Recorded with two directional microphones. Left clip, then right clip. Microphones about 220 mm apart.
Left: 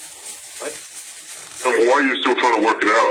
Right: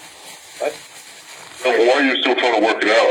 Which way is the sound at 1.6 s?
5° left (ahead or behind).